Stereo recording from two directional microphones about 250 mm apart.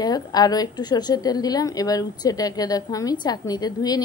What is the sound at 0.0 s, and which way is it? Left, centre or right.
A woman's voice, centre.